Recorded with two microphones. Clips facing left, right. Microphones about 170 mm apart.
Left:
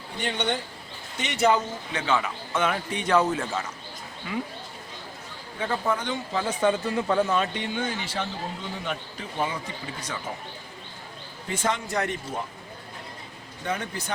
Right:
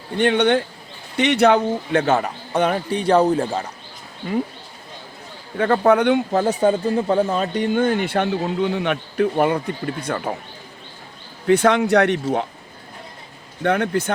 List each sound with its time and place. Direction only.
0.2 s speech: 65° right (ahead or behind); by 3.7 s 35° right (ahead or behind)
5.5 s speech: 60° right (ahead or behind)
6.3 s speech: 45° right (ahead or behind); by 10.3 s 60° right (ahead or behind)
11.4 s speech: 70° right (ahead or behind)
13.6 s speech: 65° right (ahead or behind)